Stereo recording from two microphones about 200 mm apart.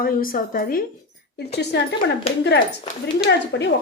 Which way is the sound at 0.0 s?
45° left (ahead or behind).